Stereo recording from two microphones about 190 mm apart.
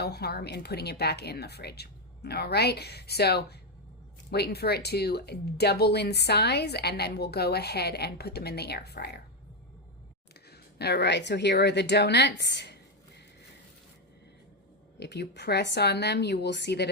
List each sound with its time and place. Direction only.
0.0 s speech: 60° left (ahead or behind)
10.5 s speech: 60° left (ahead or behind)
14.9 s speech: 60° left (ahead or behind)